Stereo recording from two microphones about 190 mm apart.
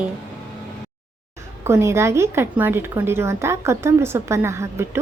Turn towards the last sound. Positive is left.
turn(degrees=-15)  # may be behind; listen again after turning